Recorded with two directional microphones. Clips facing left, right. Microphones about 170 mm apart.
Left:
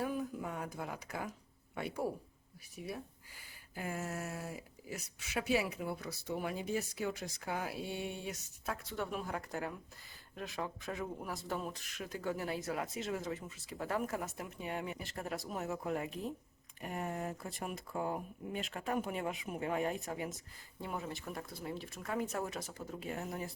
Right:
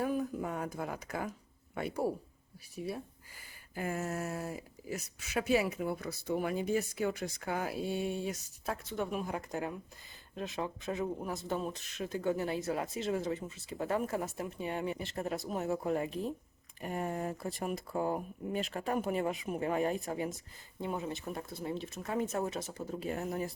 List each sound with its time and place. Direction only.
0.0 s speech: 45° right (ahead or behind)
2.7 s speech: 30° right (ahead or behind)
3.8 s speech: 45° right (ahead or behind)
8.9 s speech: 20° right (ahead or behind)
20.8 s speech: 20° right (ahead or behind); by 23.5 s 40° right (ahead or behind)